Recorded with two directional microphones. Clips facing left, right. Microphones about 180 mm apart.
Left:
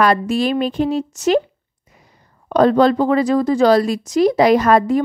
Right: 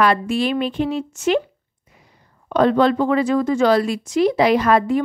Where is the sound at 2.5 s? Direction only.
40° left (ahead or behind).